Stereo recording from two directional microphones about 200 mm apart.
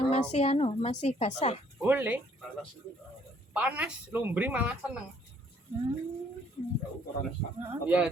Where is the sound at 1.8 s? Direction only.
10° right (ahead or behind).